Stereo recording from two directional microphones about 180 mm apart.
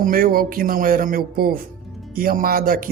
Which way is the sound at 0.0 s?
55° right (ahead or behind).